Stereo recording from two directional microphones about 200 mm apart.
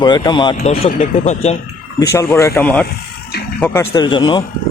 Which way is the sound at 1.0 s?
35° left (ahead or behind).